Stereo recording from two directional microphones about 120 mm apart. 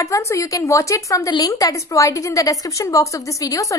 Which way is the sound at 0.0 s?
25° left (ahead or behind).